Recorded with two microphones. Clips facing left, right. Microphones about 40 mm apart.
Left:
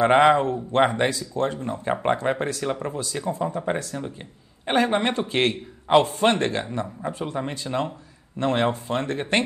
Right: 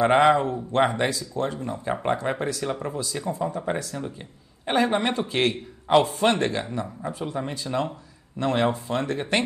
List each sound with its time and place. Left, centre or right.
0.0 s speech: left
2.6 s speech: centre
2.9 s speech: left
3.9 s speech: centre
4.6 s a man's voice: left